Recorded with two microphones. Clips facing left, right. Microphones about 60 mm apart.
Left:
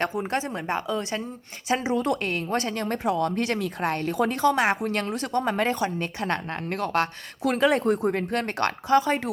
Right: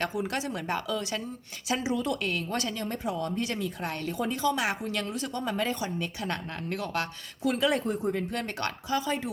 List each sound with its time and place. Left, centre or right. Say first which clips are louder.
0.0 s speech: left 4 dB; left
2.8 s speech: left 7 dB; left